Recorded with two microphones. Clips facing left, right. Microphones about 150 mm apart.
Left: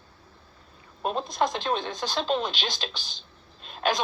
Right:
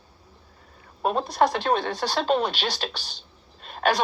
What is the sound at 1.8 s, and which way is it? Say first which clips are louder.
Speech: right 4 dB; 65° right (ahead or behind).